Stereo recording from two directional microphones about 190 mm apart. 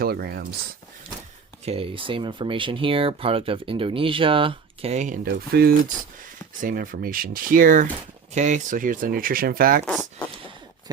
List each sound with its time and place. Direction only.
0.0 s speech: 55° right (ahead or behind)
1.6 s speech: 30° right (ahead or behind)
5.2 s speech: 55° right (ahead or behind)
9.8 s speech: 5° left (ahead or behind)